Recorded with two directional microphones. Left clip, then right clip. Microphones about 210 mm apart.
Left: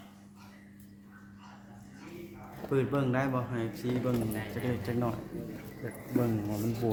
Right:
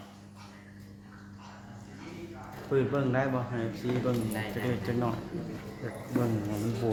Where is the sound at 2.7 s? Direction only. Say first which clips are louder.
Right 2 dB; 40° left (ahead or behind).